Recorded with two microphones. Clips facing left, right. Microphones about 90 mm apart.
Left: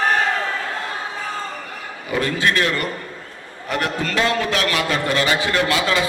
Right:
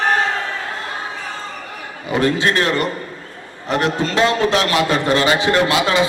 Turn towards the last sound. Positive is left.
turn(degrees=-25)  # may be behind; listen again after turning